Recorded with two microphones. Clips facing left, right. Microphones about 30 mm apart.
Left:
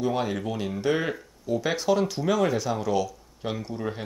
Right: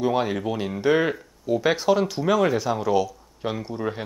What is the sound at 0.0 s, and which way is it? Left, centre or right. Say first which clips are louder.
Speech: right 4 dB; centre.